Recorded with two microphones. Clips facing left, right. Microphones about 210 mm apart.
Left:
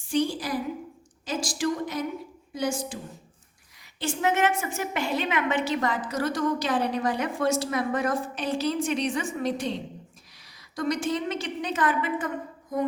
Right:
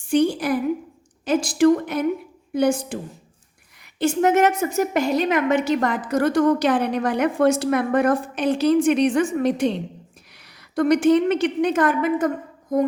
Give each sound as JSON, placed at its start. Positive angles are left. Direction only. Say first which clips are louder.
{"t": 0.1, "sound": "a woman's voice", "louder": "right 7 dB", "side_deg": -65}
{"t": 4.0, "sound": "a woman's voice", "louder": "right 7 dB", "side_deg": -45}
{"t": 10.8, "sound": "a woman's voice", "louder": "right 11 dB", "side_deg": -65}